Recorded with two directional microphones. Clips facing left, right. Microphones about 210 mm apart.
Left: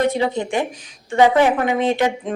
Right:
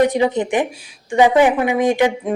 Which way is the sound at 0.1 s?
15° right (ahead or behind).